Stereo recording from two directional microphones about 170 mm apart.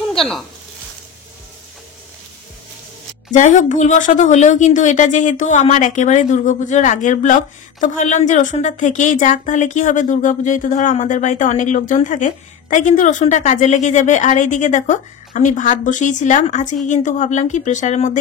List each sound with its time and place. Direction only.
0.1 s speech: 5° left (ahead or behind)
3.3 s a woman's voice: 45° left (ahead or behind)